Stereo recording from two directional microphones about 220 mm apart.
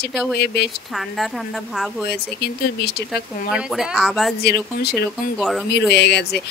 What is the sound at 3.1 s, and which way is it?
Speech, centre (ahead or behind).